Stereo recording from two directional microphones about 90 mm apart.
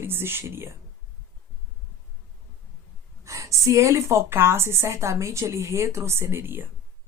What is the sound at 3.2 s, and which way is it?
Speech, 35° right (ahead or behind).